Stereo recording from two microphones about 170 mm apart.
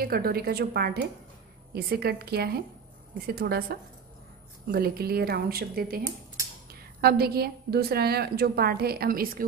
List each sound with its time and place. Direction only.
0.0 s a woman's voice: 60° right (ahead or behind)